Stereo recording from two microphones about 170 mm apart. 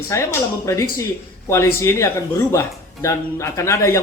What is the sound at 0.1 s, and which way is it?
Speech, 15° left (ahead or behind).